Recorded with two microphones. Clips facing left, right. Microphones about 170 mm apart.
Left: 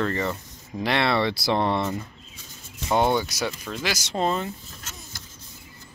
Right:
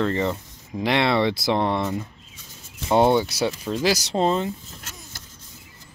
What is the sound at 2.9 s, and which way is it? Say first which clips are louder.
Speech: right 4 dB; 25° right (ahead or behind).